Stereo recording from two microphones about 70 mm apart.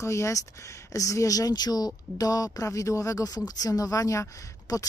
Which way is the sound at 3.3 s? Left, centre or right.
Left.